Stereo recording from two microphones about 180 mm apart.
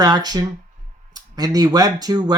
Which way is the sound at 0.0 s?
20° right (ahead or behind).